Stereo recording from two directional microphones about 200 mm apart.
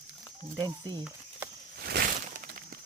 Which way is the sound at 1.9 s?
50° right (ahead or behind).